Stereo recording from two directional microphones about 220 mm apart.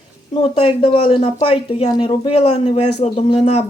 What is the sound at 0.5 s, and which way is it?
Speech, 25° left (ahead or behind).